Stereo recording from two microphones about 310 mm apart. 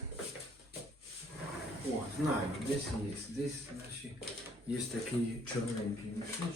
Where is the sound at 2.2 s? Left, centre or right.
Centre.